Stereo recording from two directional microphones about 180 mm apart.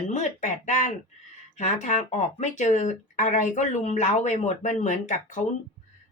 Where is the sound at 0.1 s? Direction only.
40° left (ahead or behind).